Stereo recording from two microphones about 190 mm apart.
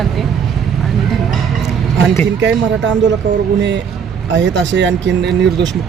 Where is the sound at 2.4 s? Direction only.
70° right (ahead or behind).